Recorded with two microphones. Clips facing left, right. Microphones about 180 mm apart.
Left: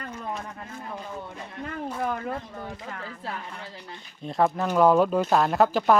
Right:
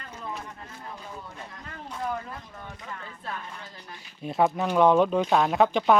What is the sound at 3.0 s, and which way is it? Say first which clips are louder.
Speech: left 2 dB; 30° left (ahead or behind).